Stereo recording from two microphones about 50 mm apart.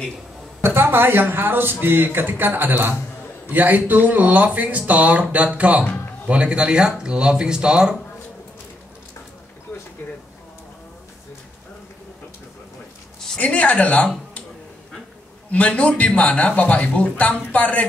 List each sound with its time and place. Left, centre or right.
0.6 s speech: right; by 8.0 s centre
13.4 s speech: left
15.5 s speech: left